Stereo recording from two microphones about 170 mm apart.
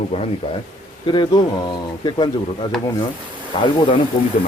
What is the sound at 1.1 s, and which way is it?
Speech, 25° left (ahead or behind).